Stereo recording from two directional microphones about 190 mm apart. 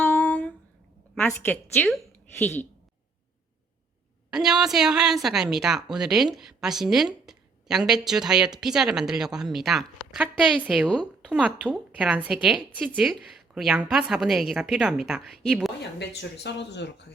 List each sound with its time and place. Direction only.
0.0 s a sound: 10° left (ahead or behind)
1.1 s a woman's voice: 10° left (ahead or behind)
4.3 s a woman's voice: centre (ahead or behind)
15.8 s speech: 65° left (ahead or behind)